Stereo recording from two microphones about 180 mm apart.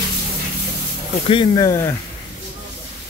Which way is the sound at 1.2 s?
30° left (ahead or behind).